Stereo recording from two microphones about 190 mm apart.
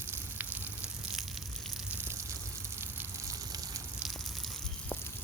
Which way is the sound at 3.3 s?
20° right (ahead or behind).